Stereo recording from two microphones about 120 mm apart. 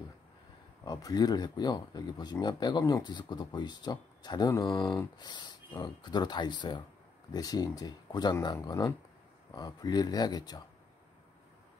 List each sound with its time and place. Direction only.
0.8 s speech: 35° left (ahead or behind)